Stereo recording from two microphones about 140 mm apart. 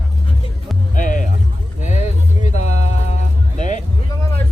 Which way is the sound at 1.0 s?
65° left (ahead or behind).